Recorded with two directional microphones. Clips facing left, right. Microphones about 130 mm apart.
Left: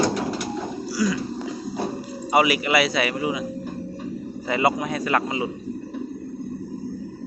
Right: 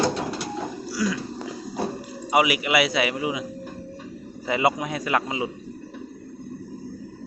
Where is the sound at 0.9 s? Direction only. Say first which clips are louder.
Left 3 dB; centre (ahead or behind).